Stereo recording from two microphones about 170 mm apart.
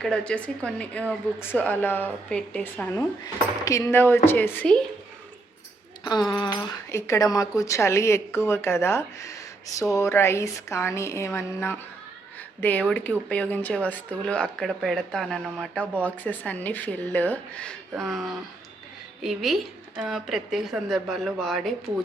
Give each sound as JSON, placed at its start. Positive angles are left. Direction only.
{"t": 0.0, "sound": "speech", "side_deg": 5}
{"t": 3.6, "sound": "speech", "side_deg": 20}
{"t": 6.1, "sound": "speech", "side_deg": 25}